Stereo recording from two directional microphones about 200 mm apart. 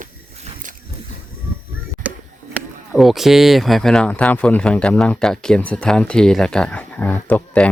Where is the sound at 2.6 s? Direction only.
Centre (ahead or behind).